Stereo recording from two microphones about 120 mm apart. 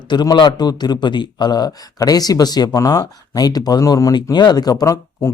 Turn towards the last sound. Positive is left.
turn(degrees=25)  # may be behind; listen again after turning